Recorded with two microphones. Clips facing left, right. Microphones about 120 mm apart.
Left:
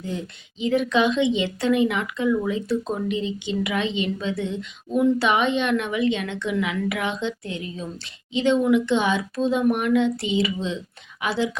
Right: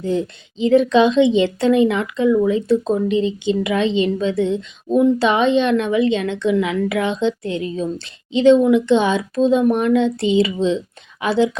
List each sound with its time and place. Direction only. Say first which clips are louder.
0.0 s a woman's voice: right 10 dB; 30° right (ahead or behind)